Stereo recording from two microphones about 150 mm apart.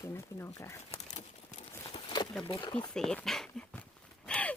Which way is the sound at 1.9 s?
30° left (ahead or behind).